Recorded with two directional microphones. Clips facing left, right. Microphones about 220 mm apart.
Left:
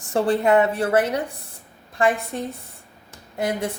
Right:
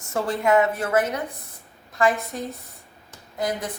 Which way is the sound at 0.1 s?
35° left (ahead or behind).